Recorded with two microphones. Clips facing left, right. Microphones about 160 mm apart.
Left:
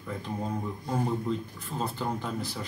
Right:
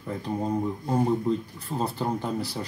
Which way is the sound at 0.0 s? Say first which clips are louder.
Right 5 dB; 35° right (ahead or behind).